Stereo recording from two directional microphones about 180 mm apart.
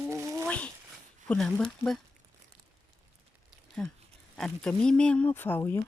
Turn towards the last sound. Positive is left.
turn(degrees=10)  # may be behind; listen again after turning